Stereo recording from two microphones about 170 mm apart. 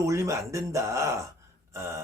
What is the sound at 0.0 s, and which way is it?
Speech, 15° right (ahead or behind).